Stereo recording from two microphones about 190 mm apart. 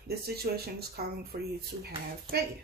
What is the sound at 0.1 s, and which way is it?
Speech, 55° right (ahead or behind).